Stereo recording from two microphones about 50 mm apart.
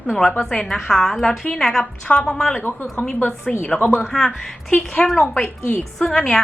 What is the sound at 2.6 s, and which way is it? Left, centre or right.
Speech, left.